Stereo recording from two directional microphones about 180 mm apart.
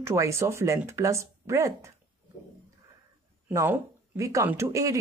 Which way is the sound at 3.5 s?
15° right (ahead or behind).